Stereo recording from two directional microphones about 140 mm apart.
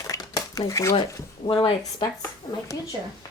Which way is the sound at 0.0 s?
25° left (ahead or behind).